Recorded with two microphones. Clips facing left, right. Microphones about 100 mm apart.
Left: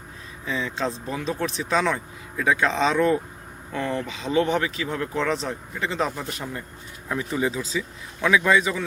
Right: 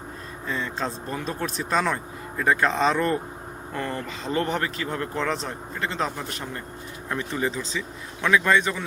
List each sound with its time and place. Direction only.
0.4 s speech: centre (ahead or behind)